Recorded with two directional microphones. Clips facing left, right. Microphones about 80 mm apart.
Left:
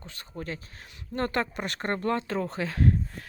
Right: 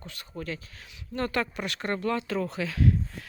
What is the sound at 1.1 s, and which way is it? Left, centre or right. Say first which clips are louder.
Speech: left 1 dB; left.